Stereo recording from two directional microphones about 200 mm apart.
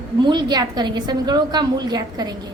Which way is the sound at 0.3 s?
20° right (ahead or behind).